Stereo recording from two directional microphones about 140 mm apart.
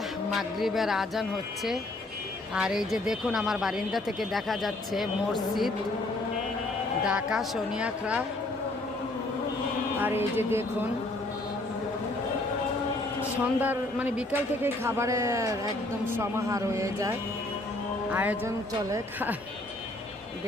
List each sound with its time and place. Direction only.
0.3 s speech: centre (ahead or behind)
7.0 s speech: 5° right (ahead or behind)
10.0 s speech: 15° right (ahead or behind)
13.3 s speech: 10° right (ahead or behind)
18.1 s speech: 10° right (ahead or behind)